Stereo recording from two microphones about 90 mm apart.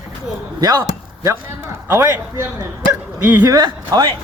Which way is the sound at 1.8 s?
30° right (ahead or behind).